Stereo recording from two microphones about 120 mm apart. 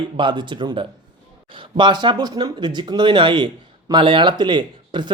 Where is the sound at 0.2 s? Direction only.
40° right (ahead or behind).